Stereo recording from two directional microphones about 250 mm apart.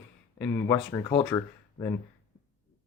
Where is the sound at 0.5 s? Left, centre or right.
Centre.